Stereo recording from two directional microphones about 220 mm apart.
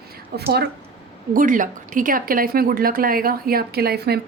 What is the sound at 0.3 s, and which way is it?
A man's voice, 45° right (ahead or behind).